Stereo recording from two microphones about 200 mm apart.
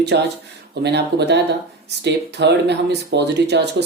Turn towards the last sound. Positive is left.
turn(degrees=-55)  # may be behind; listen again after turning